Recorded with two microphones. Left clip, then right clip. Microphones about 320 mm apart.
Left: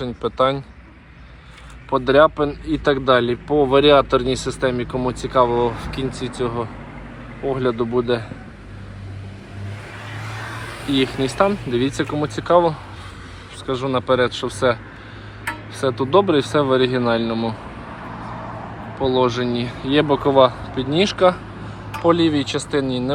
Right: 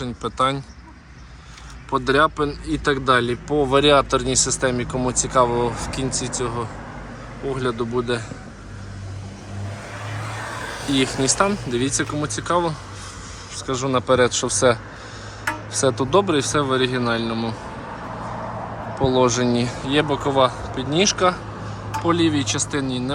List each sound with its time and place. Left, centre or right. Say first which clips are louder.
0.3 s speech: left 2 dB; centre
1.9 s speech: left 4 dB; centre
10.1 s vehicle: right 1 dB; right
10.9 s speech: left 1 dB; centre
16.0 s speech: left 6 dB; centre
18.9 s speech: even; centre